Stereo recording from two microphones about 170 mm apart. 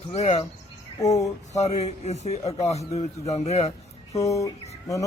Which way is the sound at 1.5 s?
40° left (ahead or behind).